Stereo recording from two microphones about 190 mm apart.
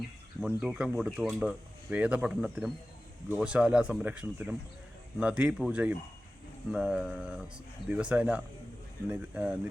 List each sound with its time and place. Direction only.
0.4 s speech: 5° right (ahead or behind)